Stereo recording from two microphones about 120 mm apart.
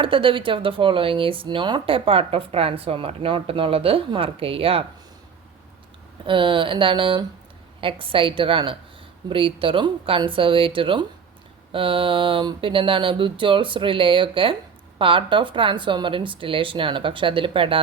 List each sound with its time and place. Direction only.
0.0 s speech: 45° right (ahead or behind)
6.2 s speech: 45° right (ahead or behind)